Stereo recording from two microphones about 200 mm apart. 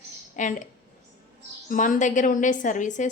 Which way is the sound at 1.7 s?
40° left (ahead or behind).